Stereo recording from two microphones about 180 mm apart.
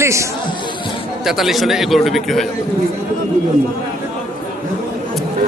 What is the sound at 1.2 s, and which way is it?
A man's voice, centre (ahead or behind).